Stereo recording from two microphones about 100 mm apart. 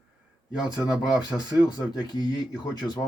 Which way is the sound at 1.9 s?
45° left (ahead or behind).